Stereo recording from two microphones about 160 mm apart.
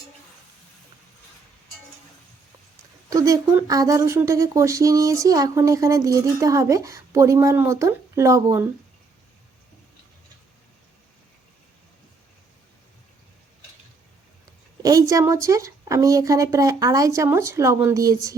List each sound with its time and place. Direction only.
3.1 s speech: 20° right (ahead or behind)
14.8 s speech: 20° right (ahead or behind)